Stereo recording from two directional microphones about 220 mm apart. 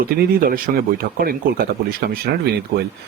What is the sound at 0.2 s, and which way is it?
Speech, 40° right (ahead or behind).